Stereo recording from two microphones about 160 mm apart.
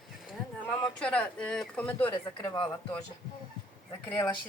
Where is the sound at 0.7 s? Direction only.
5° left (ahead or behind).